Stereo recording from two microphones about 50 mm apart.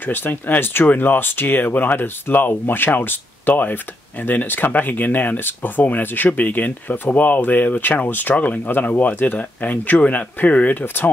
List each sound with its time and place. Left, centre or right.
0.0 s speech: left
8.1 s speech: left